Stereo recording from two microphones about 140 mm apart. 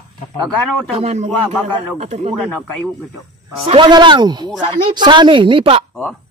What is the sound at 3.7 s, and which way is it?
Speech, 35° right (ahead or behind).